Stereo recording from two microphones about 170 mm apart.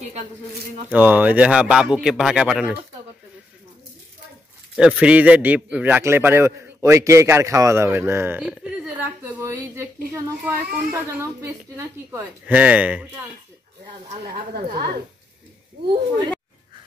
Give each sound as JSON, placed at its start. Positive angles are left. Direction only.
{"t": 0.8, "sound": "speech", "side_deg": -10}
{"t": 4.7, "sound": "a man's voice", "side_deg": -5}
{"t": 14.2, "sound": "a woman's voice", "side_deg": -65}